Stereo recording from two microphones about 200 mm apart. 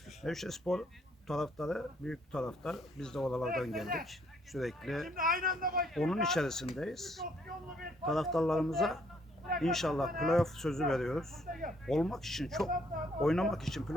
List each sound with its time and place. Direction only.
0.2 s speech: centre (ahead or behind)
5.1 s speech: 45° right (ahead or behind)
5.9 s speech: centre (ahead or behind)